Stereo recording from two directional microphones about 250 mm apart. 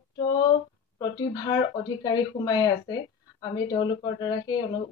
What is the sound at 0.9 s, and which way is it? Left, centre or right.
Speech, centre.